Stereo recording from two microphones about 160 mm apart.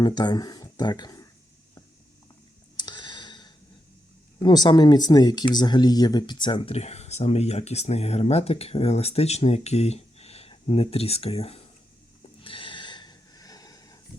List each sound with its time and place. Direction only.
0.0 s speech: 25° left (ahead or behind)
2.7 s clicking: 30° left (ahead or behind)
4.4 s speech: 25° left (ahead or behind)
12.4 s snort: 35° left (ahead or behind)